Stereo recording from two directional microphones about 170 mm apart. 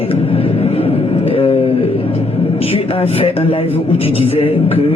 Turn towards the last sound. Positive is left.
turn(degrees=35)  # may be behind; listen again after turning